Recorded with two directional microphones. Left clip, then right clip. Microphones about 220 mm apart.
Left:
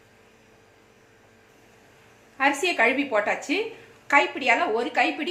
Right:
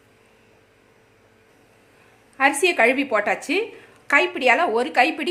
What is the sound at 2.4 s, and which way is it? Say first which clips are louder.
A woman's voice: right 4 dB; 55° right (ahead or behind).